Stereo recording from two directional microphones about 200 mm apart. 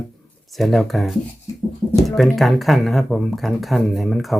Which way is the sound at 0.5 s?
Centre (ahead or behind).